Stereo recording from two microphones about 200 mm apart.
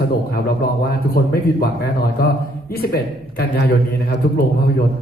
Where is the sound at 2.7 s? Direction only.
50° left (ahead or behind).